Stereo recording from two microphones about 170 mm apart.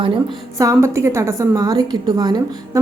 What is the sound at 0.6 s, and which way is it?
A woman's voice, 20° right (ahead or behind).